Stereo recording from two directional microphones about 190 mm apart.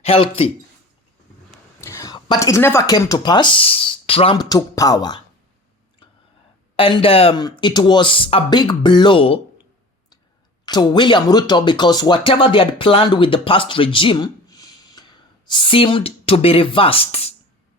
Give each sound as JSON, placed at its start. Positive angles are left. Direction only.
{"t": 0.0, "sound": "speech", "side_deg": 30}
{"t": 1.8, "sound": "speech", "side_deg": 15}
{"t": 6.7, "sound": "speech", "side_deg": 30}
{"t": 10.7, "sound": "speech", "side_deg": 25}